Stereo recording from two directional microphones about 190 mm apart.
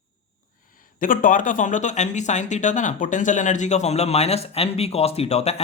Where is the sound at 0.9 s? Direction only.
45° left (ahead or behind).